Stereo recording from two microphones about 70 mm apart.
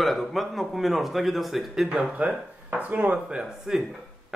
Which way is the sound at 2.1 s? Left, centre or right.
Centre.